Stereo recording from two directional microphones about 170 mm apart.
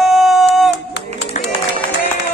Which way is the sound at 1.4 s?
45° left (ahead or behind).